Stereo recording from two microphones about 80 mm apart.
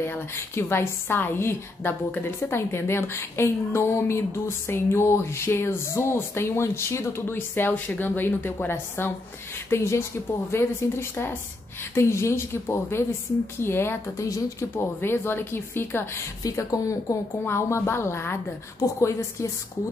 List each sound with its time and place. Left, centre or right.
0.0 s a woman's voice: left
15.0 s a woman's voice: left
16.4 s a woman's voice: left